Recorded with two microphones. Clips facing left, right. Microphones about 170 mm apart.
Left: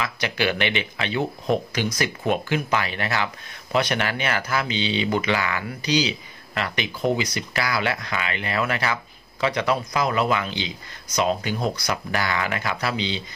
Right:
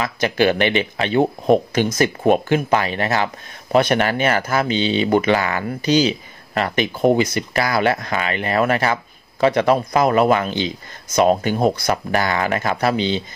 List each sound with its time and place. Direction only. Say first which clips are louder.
0.0 s speech: right 7 dB; 45° right (ahead or behind)